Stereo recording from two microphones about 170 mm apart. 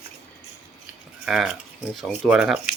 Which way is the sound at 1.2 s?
5° right (ahead or behind).